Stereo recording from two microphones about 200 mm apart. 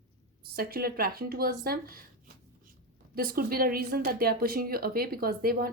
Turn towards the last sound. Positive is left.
turn(degrees=-50)  # may be behind; listen again after turning